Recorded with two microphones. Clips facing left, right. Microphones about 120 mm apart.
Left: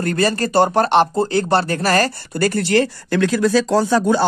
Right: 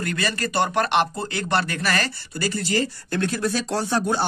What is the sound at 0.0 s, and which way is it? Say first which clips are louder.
Speech: left 8 dB; 40° left (ahead or behind).